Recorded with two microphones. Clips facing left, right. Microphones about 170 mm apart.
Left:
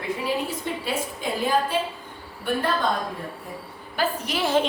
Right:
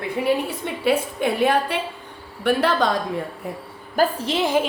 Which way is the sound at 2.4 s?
80° right.